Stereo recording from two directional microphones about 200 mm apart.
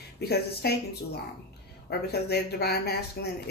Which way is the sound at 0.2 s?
55° left (ahead or behind).